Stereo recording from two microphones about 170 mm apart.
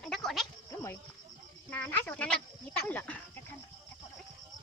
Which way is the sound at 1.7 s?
10° left (ahead or behind).